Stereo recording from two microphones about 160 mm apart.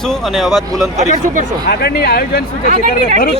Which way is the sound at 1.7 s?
80° left.